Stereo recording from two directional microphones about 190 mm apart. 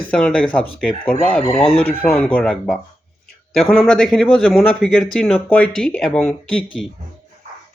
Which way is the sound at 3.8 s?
Centre (ahead or behind).